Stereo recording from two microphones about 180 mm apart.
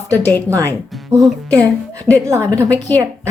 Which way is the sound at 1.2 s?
5° left (ahead or behind).